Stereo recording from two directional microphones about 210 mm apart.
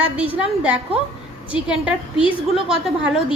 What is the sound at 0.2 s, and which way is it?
A woman's voice, 5° right (ahead or behind).